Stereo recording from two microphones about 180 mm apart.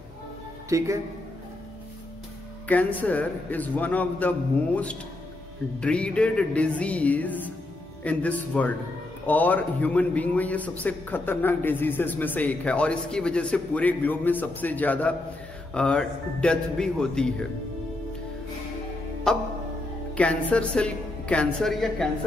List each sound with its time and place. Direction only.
0.7 s a man's voice: 15° right (ahead or behind)
2.7 s a man's voice: 10° left (ahead or behind)
19.3 s a woman's voice: 5° left (ahead or behind)